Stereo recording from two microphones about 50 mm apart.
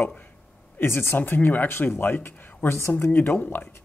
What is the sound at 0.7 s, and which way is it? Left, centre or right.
Speech, left.